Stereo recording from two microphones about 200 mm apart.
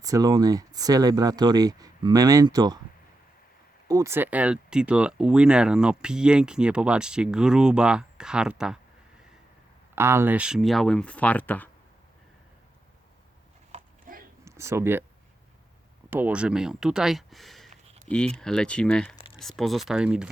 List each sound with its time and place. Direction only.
0.0 s speech: 15° right (ahead or behind)
3.8 s speech: 15° right (ahead or behind)
9.9 s speech: 10° right (ahead or behind); by 11.7 s 10° left (ahead or behind)
13.7 s a sound: 45° right (ahead or behind)
14.4 s speech: 15° right (ahead or behind)
16.0 s speech: 10° right (ahead or behind)